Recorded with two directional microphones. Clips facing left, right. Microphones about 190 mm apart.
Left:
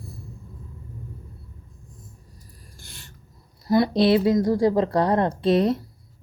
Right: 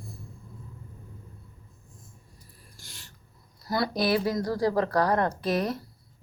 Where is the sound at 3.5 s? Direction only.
20° left (ahead or behind).